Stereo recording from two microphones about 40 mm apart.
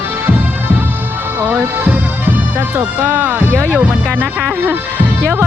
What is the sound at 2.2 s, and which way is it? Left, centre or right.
Music, right.